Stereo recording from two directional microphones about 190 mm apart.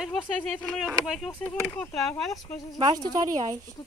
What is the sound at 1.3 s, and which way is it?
Speech, 10° left (ahead or behind).